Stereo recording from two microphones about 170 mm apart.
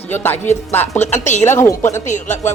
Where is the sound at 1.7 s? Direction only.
15° left (ahead or behind).